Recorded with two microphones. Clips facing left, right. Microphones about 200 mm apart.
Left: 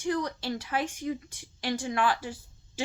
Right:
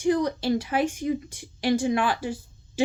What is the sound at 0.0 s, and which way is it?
A woman's voice, 15° right (ahead or behind).